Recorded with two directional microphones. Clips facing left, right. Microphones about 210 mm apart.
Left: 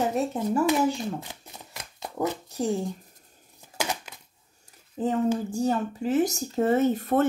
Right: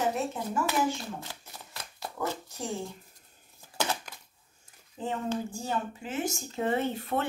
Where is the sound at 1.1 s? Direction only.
15° left (ahead or behind).